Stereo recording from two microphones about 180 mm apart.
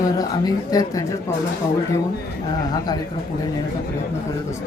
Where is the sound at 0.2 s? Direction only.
20° left (ahead or behind).